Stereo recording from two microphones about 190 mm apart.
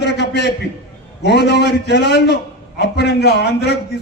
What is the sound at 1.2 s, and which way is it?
A man's voice, 60° left (ahead or behind).